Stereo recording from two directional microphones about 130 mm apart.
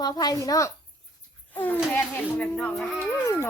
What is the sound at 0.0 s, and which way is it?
Speech, 30° left (ahead or behind).